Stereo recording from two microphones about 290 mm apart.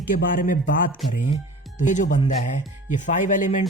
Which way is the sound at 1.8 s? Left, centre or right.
Left.